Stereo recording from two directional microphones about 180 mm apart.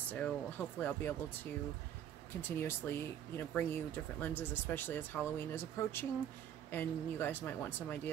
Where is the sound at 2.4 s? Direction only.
10° left (ahead or behind).